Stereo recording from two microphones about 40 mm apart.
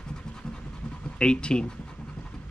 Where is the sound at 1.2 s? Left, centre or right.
Left.